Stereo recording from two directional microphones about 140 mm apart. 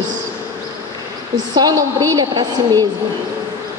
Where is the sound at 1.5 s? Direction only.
25° right (ahead or behind).